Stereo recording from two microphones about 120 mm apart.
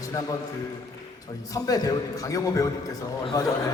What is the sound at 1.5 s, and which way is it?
A man's voice, 30° left (ahead or behind).